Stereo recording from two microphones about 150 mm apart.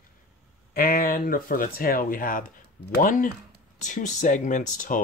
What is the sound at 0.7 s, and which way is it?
Speech, 70° left (ahead or behind).